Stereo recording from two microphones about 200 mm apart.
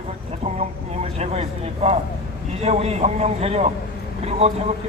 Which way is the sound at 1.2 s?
30° right (ahead or behind).